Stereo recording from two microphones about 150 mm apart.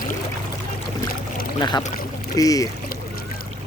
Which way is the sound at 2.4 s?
25° left (ahead or behind).